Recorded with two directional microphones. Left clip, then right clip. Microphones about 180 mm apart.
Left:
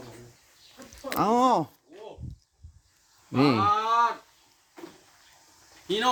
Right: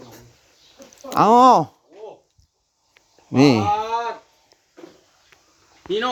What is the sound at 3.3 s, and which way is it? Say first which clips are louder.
Speech: right 7 dB; 40° right (ahead or behind).